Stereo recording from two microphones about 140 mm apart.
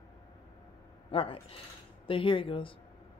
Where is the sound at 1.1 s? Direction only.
40° left (ahead or behind).